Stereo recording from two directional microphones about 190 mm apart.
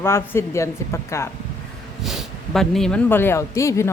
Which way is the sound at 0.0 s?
15° left (ahead or behind).